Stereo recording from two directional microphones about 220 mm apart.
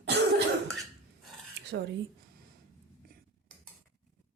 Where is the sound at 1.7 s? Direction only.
55° right (ahead or behind).